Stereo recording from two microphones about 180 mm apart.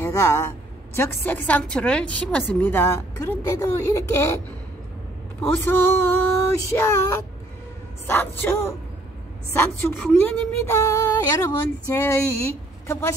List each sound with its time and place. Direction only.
0.0 s a woman's voice: 15° left (ahead or behind)
5.4 s a woman's voice: 10° left (ahead or behind)
8.1 s a woman's voice: 10° left (ahead or behind)